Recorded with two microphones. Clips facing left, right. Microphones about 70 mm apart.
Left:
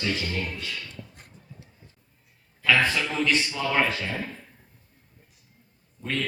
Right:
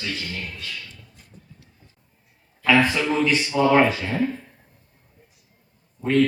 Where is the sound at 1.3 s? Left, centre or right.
Right.